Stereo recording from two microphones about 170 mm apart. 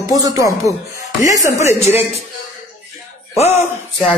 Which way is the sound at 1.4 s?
40° left (ahead or behind).